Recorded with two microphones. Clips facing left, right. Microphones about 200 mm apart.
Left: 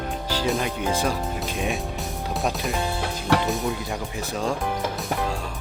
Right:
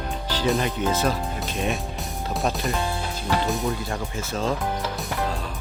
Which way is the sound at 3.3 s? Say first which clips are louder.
Left 3 dB; 80° left.